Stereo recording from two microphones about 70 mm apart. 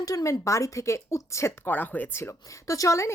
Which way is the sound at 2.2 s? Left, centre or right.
Left.